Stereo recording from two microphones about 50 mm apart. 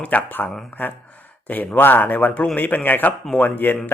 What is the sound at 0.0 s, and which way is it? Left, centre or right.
Speech, left.